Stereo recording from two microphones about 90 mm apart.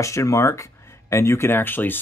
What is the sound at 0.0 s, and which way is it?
Speech, 35° left (ahead or behind).